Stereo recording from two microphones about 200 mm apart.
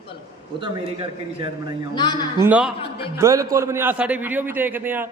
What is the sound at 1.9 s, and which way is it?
Speech, 20° left (ahead or behind).